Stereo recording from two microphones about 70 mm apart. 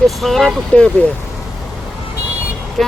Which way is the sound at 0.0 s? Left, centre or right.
Centre.